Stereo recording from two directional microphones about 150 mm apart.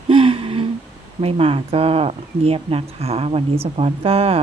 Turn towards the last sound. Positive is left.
turn(degrees=-40)  # may be behind; listen again after turning